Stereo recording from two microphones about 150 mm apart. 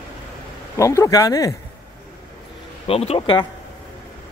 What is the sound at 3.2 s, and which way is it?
Speech, 30° left (ahead or behind).